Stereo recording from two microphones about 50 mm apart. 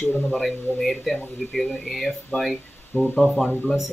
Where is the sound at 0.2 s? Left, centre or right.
Centre.